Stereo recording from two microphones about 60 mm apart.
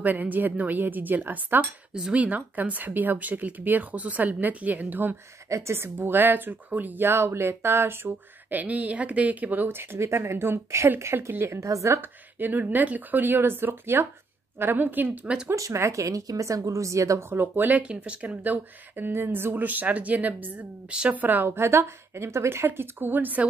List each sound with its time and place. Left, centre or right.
0.0 s speech: right
1.6 s speech: centre
2.2 s speech: right
5.5 s speech: right
6.0 s speech: right
8.5 s speech: right
11.6 s speech: right
12.0 s speech: right
15.5 s speech: right
17.3 s speech: right
20.9 s speech: centre
21.2 s speech: right
21.5 s speech: right
22.7 s speech: right